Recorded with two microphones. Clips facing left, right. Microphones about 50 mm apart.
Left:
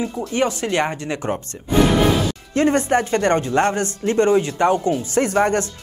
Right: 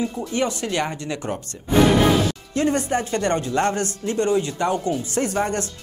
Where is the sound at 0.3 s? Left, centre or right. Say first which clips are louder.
Left 5 dB; left.